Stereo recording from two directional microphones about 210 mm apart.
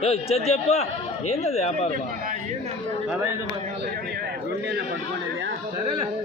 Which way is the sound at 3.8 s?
50° right (ahead or behind).